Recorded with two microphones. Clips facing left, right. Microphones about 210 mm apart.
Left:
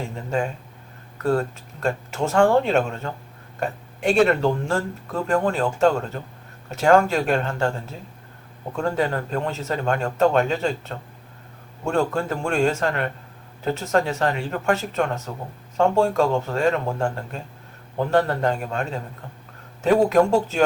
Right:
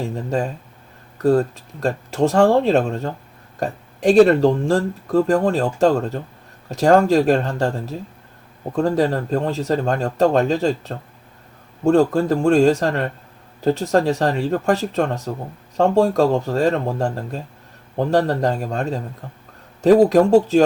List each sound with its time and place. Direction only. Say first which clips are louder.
1.8 s speech: right 5 dB; 35° right (ahead or behind)